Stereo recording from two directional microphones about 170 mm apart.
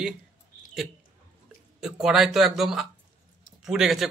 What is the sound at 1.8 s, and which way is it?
Speech, 5° right (ahead or behind).